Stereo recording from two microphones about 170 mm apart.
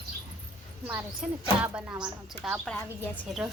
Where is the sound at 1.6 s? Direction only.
15° right (ahead or behind).